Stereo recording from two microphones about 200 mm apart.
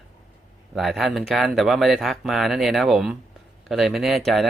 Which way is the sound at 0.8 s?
Centre (ahead or behind).